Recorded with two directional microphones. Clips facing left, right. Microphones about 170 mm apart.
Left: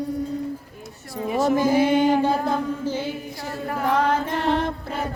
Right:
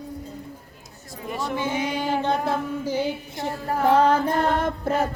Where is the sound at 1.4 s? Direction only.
40° left (ahead or behind).